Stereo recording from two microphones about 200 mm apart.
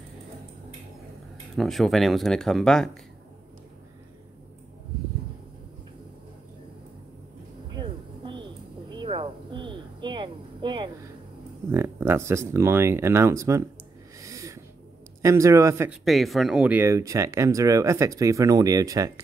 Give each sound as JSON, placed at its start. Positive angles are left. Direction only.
{"t": 1.6, "sound": "speech", "side_deg": 0}
{"t": 7.7, "sound": "a sound", "side_deg": -25}
{"t": 11.7, "sound": "speech", "side_deg": -10}
{"t": 14.2, "sound": "a sound", "side_deg": -15}
{"t": 15.2, "sound": "speech", "side_deg": -15}
{"t": 16.0, "sound": "speech", "side_deg": 0}